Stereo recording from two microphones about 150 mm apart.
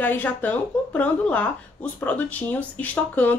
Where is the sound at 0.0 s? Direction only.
10° left (ahead or behind).